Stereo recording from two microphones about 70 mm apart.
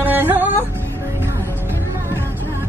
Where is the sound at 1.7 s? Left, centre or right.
Right.